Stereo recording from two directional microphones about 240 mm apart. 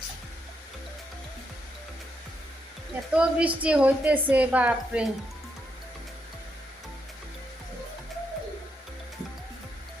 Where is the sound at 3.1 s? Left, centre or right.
Centre.